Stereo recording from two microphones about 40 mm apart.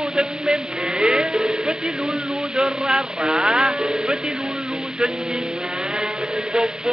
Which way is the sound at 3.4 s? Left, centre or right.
Centre.